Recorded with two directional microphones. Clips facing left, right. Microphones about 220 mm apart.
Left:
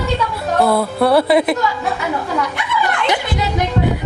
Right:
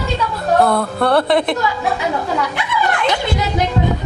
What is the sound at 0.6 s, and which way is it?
Speech, 5° left (ahead or behind).